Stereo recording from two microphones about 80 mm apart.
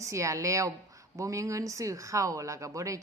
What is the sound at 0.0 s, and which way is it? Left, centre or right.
A woman's voice, right.